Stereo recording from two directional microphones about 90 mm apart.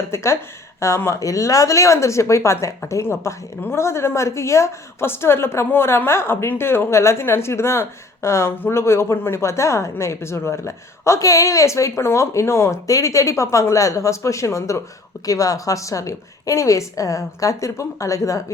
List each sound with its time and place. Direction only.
0.1 s a woman's voice: 30° left (ahead or behind)